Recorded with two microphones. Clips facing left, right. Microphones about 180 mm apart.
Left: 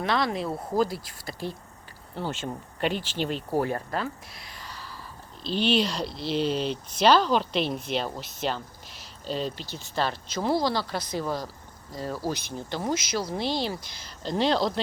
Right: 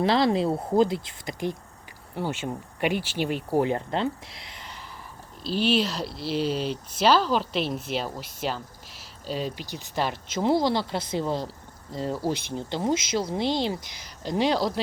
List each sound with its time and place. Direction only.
0.0 s speech: 25° right (ahead or behind)
5.4 s speech: 5° right (ahead or behind)